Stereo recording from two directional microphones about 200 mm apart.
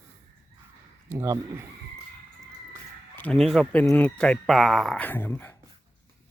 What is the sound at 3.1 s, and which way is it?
Speech, 5° left (ahead or behind).